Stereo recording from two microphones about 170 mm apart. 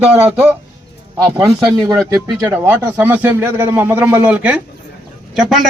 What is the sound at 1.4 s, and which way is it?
A man's voice, 25° right (ahead or behind).